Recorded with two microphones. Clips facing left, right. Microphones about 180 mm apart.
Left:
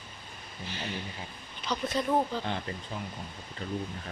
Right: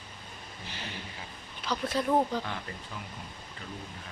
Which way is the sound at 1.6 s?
5° right (ahead or behind).